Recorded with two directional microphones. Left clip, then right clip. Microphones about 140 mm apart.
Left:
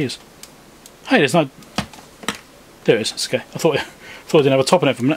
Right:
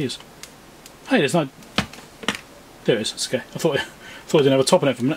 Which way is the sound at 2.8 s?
20° left (ahead or behind).